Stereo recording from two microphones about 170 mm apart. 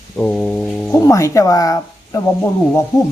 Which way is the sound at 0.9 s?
20° left (ahead or behind).